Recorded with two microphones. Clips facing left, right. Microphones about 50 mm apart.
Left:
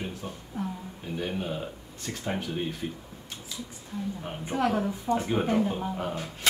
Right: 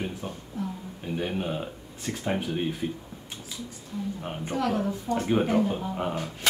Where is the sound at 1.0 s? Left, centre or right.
Centre.